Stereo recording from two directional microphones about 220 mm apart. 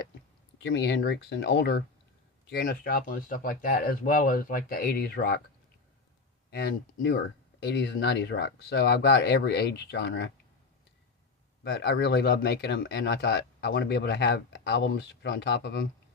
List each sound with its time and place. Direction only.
0.6 s speech: 60° left (ahead or behind)
7.6 s speech: 50° left (ahead or behind)
11.6 s speech: 50° left (ahead or behind)